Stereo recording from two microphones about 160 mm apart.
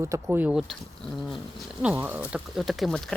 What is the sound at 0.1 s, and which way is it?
Speech, 10° right (ahead or behind).